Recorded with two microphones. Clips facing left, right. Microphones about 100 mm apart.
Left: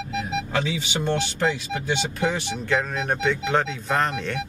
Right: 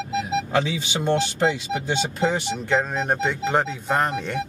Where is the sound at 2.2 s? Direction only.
25° right (ahead or behind).